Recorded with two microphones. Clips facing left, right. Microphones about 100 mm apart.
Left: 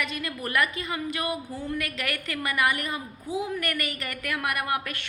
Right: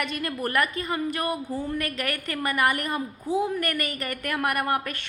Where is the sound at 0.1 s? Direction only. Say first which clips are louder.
Right 3 dB; 45° right (ahead or behind).